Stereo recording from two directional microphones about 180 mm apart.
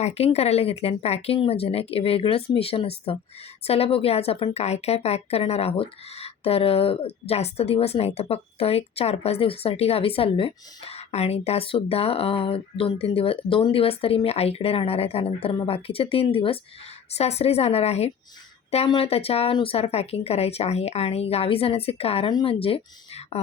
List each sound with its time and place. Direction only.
0.0 s a woman's voice: 35° left (ahead or behind)